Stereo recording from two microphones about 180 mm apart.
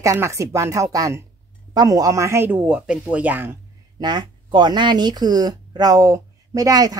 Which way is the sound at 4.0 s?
25° right (ahead or behind).